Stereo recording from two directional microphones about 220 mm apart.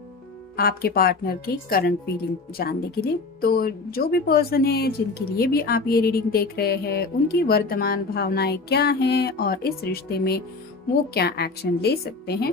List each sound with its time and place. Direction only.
0.5 s speech: 45° left (ahead or behind)